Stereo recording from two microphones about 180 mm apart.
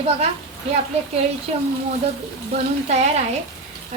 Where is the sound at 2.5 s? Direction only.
35° right (ahead or behind).